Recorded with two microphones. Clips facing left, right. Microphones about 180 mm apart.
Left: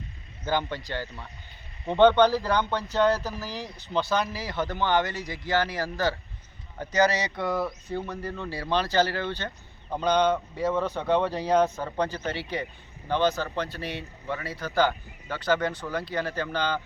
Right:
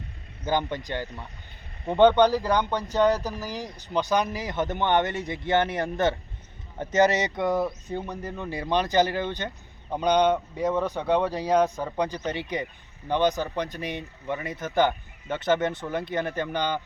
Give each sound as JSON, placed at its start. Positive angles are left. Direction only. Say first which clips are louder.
{"t": 0.4, "sound": "speech", "louder": "right 2 dB", "side_deg": -15}